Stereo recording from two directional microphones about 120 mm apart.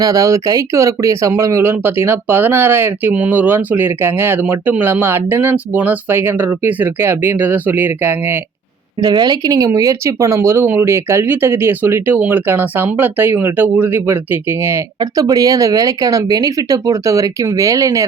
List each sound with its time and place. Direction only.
0.0 s speech: 30° right (ahead or behind)
9.0 s speech: 35° right (ahead or behind); by 14.2 s 15° right (ahead or behind)
15.2 s speech: 30° right (ahead or behind)